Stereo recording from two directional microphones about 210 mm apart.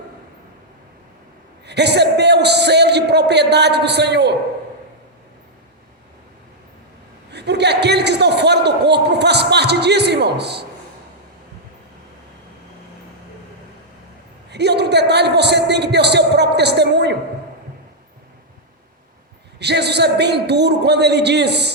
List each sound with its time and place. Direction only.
1.6 s a man's voice: 55° right (ahead or behind)
7.3 s a man's voice: 55° right (ahead or behind)
14.5 s a sound: 55° right (ahead or behind)
19.5 s a man's voice: 55° right (ahead or behind)